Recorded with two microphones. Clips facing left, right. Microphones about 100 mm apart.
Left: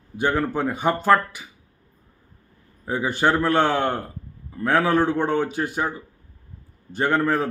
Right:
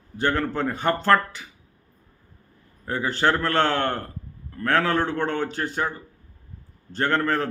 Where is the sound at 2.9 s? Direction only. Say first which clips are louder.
Left 2 dB; 15° left (ahead or behind).